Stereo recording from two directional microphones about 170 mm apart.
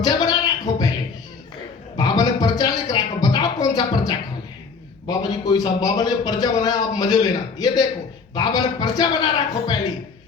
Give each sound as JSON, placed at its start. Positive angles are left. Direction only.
{"t": 0.0, "sound": "music", "side_deg": 25}
{"t": 2.0, "sound": "a sound", "side_deg": 20}
{"t": 5.0, "sound": "a man's voice", "side_deg": 20}